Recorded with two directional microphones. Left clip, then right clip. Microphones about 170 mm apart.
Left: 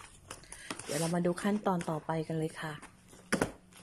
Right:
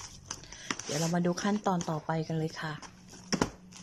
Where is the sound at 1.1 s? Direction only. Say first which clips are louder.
Right 1 dB; centre (ahead or behind).